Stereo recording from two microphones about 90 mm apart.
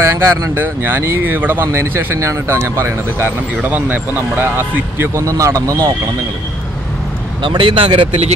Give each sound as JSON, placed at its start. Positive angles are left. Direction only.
{"t": 0.0, "sound": "speech", "side_deg": -30}
{"t": 7.4, "sound": "speech", "side_deg": -65}